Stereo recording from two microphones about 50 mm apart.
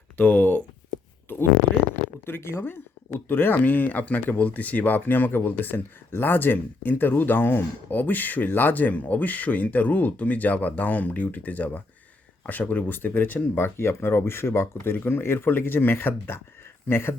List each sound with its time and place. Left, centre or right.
0.2 s speech: left
2.2 s speech: left
2.6 s speech: left
13.7 s speech: left
14.9 s speech: left